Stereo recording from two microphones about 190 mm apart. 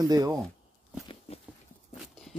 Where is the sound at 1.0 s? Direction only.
30° left (ahead or behind).